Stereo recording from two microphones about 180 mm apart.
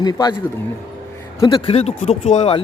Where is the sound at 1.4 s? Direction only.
30° left (ahead or behind).